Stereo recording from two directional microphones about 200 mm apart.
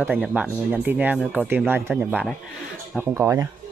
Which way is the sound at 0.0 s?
10° right (ahead or behind).